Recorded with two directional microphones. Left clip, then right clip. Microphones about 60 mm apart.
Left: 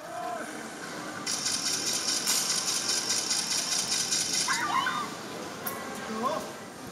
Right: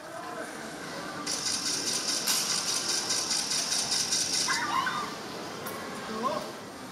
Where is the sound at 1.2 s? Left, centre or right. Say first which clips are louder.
Left 1 dB; left.